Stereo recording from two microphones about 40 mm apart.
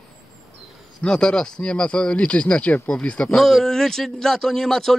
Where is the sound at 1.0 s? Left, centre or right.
Centre.